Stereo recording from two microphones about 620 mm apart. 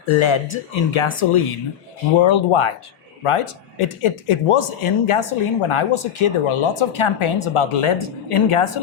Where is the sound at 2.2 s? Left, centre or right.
Left.